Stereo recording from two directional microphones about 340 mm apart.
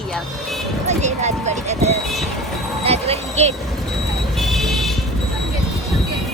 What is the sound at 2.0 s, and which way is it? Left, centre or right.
Speech, centre.